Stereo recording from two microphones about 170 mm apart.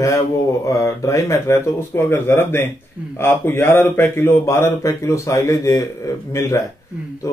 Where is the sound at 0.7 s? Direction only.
20° left (ahead or behind).